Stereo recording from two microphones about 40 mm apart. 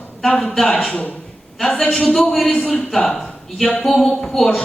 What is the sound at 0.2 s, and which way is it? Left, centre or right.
Speech, centre.